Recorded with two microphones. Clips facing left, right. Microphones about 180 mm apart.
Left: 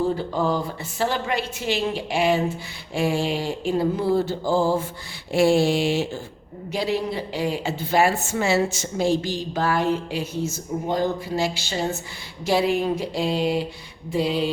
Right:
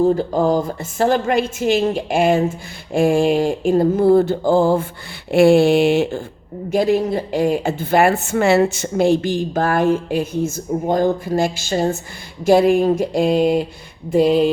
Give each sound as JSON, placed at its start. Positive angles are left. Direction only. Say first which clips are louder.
{"t": 0.0, "sound": "a woman's voice", "louder": "right 7 dB", "side_deg": -45}
{"t": 5.3, "sound": "a sound", "louder": "right 7 dB", "side_deg": -60}
{"t": 6.7, "sound": "a woman's voice", "louder": "right 8 dB", "side_deg": -50}